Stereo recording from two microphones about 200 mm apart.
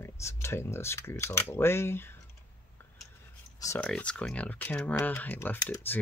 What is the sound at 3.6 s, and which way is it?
Speech, 15° left (ahead or behind).